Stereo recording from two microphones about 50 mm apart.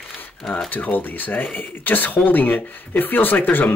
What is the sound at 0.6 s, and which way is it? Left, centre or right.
Speech, left.